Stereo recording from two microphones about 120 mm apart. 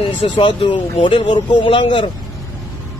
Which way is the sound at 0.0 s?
50° left (ahead or behind).